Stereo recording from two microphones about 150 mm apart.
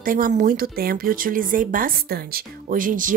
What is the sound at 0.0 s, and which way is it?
Speech, 70° right (ahead or behind).